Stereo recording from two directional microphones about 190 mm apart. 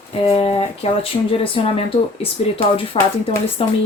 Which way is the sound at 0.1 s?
30° left (ahead or behind).